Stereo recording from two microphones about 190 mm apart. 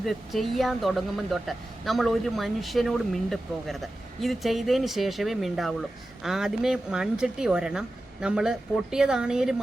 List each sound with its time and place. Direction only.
0.0 s speech: centre (ahead or behind)